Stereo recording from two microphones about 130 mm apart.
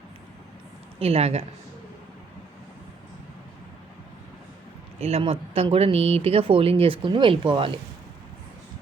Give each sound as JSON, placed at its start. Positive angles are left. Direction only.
{"t": 0.9, "sound": "speech", "side_deg": -50}
{"t": 4.9, "sound": "speech", "side_deg": -50}